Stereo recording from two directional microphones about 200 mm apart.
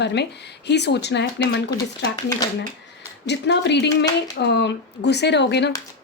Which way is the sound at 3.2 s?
60° left (ahead or behind).